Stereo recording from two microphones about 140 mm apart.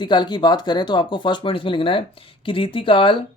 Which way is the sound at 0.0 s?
30° left (ahead or behind).